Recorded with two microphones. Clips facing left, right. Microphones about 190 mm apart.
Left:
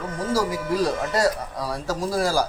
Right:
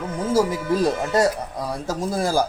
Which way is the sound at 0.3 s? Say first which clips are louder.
Right 3 dB; 25° right (ahead or behind).